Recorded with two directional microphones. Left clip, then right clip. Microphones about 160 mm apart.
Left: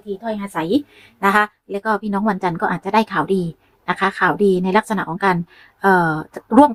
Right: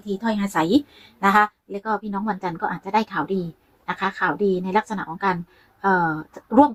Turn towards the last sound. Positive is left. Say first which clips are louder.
# left 4 dB
turn(degrees=35)  # may be behind; listen again after turning